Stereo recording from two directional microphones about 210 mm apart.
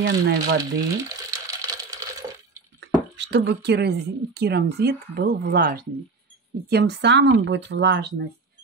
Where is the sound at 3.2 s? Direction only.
55° right (ahead or behind).